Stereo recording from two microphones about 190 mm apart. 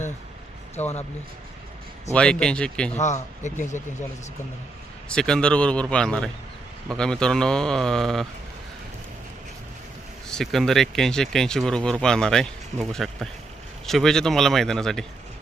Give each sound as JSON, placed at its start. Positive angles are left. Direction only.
{"t": 2.1, "sound": "speech", "side_deg": 5}
{"t": 2.9, "sound": "a man's voice", "side_deg": 40}
{"t": 5.0, "sound": "speech", "side_deg": 5}
{"t": 10.2, "sound": "speech", "side_deg": 0}